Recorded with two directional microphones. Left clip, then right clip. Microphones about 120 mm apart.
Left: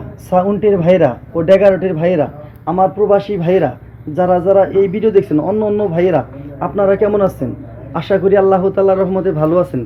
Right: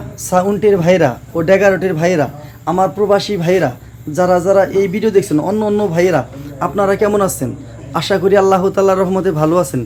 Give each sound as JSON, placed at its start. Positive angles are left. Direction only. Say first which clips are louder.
{"t": 0.3, "sound": "speech", "louder": "even", "side_deg": -20}